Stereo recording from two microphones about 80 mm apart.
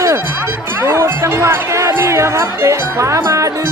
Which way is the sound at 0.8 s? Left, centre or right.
Right.